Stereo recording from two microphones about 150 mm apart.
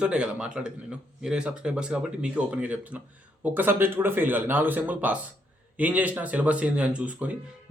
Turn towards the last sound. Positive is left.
turn(degrees=-10)  # may be behind; listen again after turning